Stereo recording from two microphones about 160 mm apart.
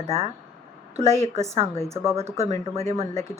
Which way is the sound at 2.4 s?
40° right (ahead or behind).